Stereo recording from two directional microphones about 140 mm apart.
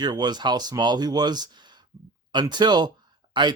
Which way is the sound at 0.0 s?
30° right (ahead or behind).